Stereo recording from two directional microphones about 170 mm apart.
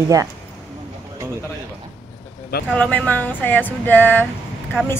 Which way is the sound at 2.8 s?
10° left (ahead or behind).